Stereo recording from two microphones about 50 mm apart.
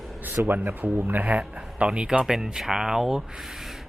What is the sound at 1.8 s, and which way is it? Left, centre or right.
Speech, centre.